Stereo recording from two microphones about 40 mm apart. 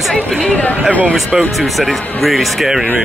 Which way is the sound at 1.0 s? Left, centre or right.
Right.